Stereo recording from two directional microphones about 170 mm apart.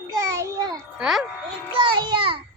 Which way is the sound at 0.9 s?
Centre (ahead or behind).